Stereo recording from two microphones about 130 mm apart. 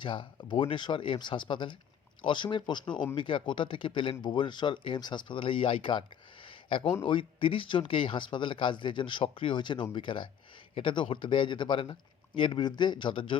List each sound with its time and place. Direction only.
0.0 s speech: 40° left (ahead or behind)